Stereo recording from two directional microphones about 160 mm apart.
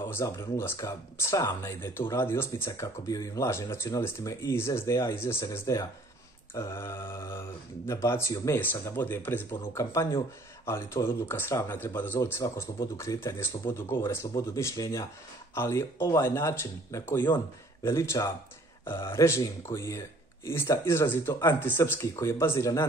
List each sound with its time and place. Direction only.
0.0 s speech: 15° left (ahead or behind)